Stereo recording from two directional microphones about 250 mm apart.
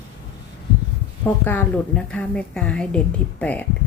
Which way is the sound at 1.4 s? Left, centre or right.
Centre.